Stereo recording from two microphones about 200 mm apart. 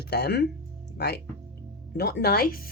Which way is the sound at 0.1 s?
55° left (ahead or behind).